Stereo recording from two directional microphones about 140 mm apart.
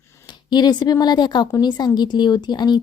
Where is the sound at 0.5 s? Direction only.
30° left (ahead or behind).